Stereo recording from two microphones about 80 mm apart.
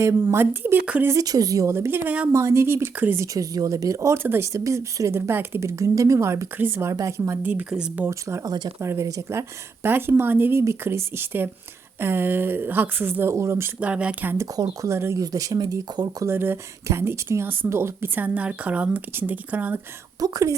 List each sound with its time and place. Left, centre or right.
0.0 s speech: right
1.2 s speech: right
1.7 s speech: right
2.0 s speech: centre
2.3 s speech: right
3.3 s speech: right
7.7 s speech: centre
8.8 s speech: right
9.8 s speech: right
13.7 s speech: centre
14.5 s speech: right
15.2 s speech: right
16.2 s speech: right
20.1 s speech: right